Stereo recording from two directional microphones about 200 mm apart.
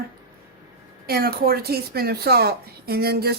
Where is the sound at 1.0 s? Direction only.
50° right (ahead or behind).